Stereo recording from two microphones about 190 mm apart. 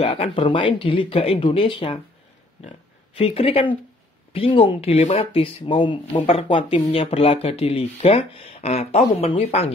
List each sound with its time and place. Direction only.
0.0 s speech: 30° left (ahead or behind)
3.2 s speech: 30° left (ahead or behind)